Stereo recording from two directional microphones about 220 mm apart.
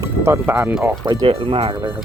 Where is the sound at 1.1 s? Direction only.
20° right (ahead or behind).